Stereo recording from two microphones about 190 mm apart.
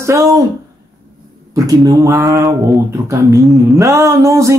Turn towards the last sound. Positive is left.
turn(degrees=-15)  # may be behind; listen again after turning